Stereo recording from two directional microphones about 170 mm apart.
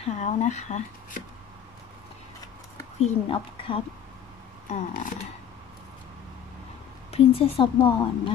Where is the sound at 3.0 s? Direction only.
30° left (ahead or behind).